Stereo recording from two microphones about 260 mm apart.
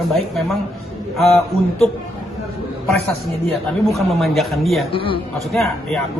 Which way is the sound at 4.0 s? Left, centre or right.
Centre.